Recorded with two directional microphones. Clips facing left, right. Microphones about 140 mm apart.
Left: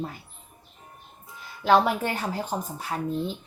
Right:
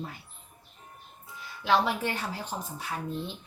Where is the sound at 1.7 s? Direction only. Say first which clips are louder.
Left 5 dB; 45° left (ahead or behind).